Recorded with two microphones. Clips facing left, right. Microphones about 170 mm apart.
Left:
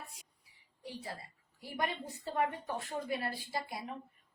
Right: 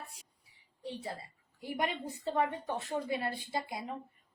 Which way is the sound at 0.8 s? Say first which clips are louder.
Right 4 dB; 25° right (ahead or behind).